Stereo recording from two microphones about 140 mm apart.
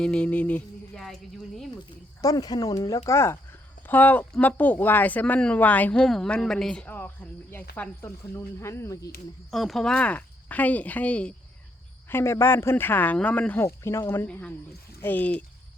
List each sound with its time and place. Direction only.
0.0 s a sound: 5° left (ahead or behind)
2.2 s speech: 25° left (ahead or behind)
9.5 s speech: centre (ahead or behind)